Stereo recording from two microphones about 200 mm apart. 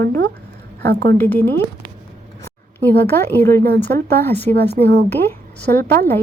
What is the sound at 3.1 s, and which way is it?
Speech, 10° left (ahead or behind).